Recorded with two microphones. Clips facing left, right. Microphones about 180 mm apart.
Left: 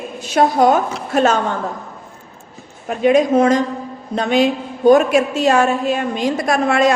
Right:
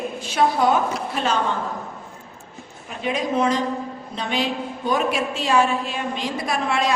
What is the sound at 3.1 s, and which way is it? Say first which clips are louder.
A woman's voice: left 7 dB; 45° left (ahead or behind).